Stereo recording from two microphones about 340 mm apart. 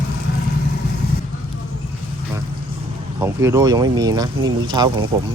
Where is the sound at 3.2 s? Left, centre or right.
Centre.